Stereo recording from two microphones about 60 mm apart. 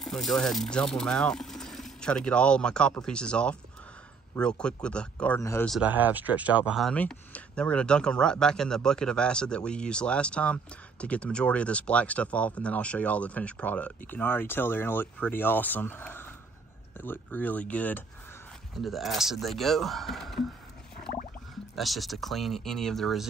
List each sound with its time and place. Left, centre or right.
0.0 s speech: centre
5.9 s speech: right
6.9 s speech: centre
18.8 s speech: centre
21.7 s speech: centre